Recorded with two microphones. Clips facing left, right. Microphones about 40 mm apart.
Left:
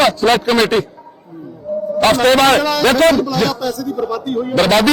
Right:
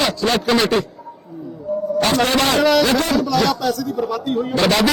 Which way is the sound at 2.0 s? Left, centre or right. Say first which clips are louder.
Left 7 dB; left.